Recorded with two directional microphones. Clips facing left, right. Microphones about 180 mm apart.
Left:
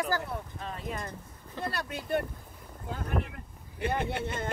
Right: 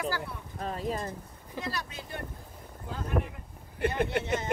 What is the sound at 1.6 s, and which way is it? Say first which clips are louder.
Speech: left 2 dB; 55° left (ahead or behind).